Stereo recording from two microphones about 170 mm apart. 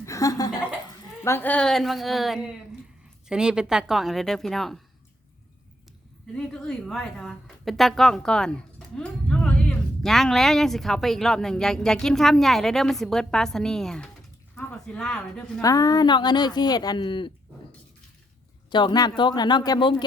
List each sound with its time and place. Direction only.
0.0 s a sound: 20° left (ahead or behind)
1.2 s speech: 15° left (ahead or behind)
6.3 s speech: 5° left (ahead or behind)
15.6 s speech: 20° left (ahead or behind)
18.7 s speech: 25° left (ahead or behind)